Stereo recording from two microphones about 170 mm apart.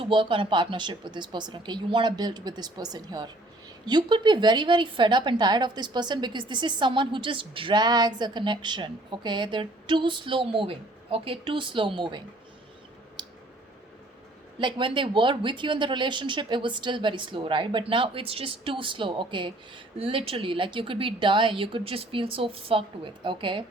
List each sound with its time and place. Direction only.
0.0 s a woman's voice: 30° right (ahead or behind)
14.6 s a woman's voice: 30° right (ahead or behind)